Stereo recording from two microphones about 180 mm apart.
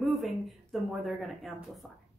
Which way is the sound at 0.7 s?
Centre (ahead or behind).